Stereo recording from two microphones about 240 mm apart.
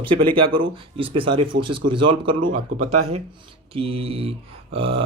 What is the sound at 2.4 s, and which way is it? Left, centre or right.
Speech, right.